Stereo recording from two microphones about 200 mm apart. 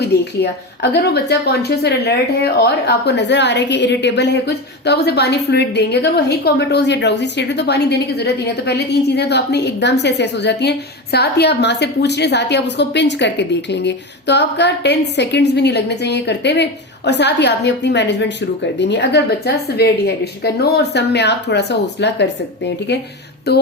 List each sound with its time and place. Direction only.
0.0 s a woman's voice: 55° left (ahead or behind)